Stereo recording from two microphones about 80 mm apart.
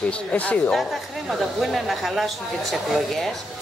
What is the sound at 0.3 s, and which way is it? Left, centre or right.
Speech, centre.